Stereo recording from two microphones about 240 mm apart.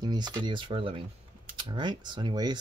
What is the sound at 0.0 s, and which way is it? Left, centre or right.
Speech, centre.